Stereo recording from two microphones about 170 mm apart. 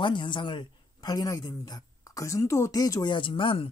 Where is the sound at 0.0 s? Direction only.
30° left (ahead or behind).